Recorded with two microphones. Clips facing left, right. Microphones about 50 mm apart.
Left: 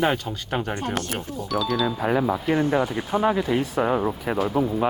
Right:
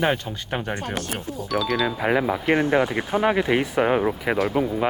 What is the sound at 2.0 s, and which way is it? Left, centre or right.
Speech, right.